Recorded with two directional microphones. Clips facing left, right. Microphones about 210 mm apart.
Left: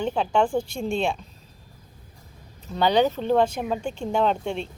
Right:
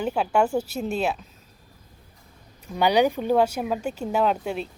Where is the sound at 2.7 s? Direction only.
10° right (ahead or behind).